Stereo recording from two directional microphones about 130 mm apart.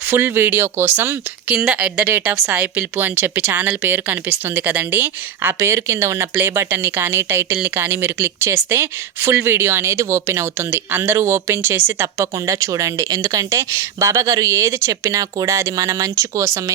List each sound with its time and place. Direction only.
0.1 s speech: 15° right (ahead or behind)